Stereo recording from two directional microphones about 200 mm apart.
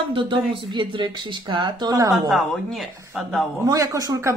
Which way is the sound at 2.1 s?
Centre (ahead or behind).